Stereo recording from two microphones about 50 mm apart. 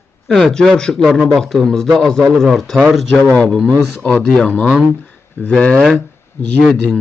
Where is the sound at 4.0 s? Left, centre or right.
Left.